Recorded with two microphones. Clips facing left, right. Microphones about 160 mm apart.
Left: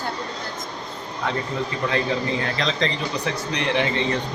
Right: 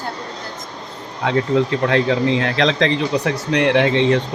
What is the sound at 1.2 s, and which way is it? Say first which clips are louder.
Speech: right 9 dB; 75° right (ahead or behind).